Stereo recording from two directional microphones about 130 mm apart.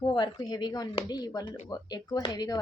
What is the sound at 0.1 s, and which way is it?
A woman's voice, 35° left (ahead or behind).